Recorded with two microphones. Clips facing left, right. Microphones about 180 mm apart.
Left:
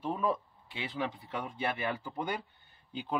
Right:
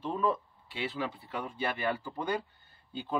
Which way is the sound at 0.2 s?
15° left (ahead or behind).